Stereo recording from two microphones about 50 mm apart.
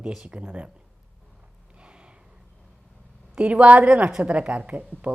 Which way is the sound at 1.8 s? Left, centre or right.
Right.